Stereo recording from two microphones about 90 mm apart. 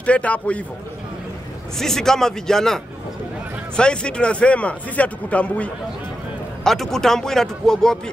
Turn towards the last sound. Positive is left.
turn(degrees=5)  # may be behind; listen again after turning